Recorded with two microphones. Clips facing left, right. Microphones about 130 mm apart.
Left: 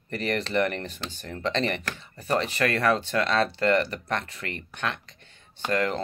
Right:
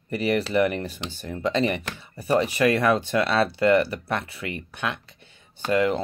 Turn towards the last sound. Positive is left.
turn(degrees=-10)  # may be behind; listen again after turning